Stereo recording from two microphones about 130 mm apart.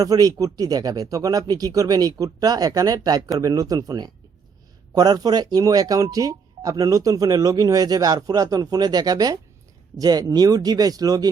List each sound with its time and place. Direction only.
0.0 s speech: 30° right (ahead or behind)